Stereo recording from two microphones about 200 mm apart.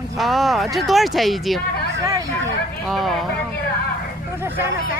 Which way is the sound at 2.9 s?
Centre (ahead or behind).